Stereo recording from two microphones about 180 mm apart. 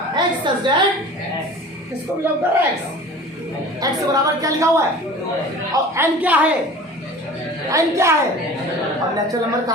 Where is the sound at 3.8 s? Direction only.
20° right (ahead or behind).